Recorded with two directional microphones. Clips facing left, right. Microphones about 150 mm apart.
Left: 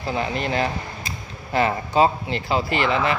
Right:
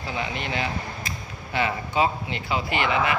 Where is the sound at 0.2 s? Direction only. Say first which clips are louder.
Left 5 dB; 40° left (ahead or behind).